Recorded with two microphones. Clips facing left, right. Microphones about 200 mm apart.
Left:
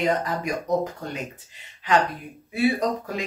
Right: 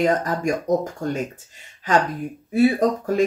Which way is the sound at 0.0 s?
45° right (ahead or behind).